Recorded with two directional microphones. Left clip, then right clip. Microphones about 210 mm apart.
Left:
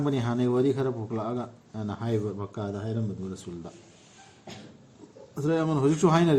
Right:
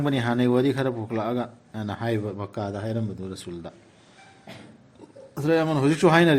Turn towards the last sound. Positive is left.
turn(degrees=-50)  # may be behind; listen again after turning